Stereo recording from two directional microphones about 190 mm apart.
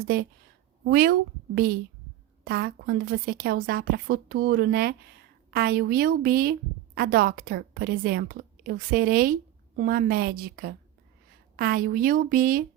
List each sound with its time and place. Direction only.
0.9 s a woman's voice: 50° right (ahead or behind)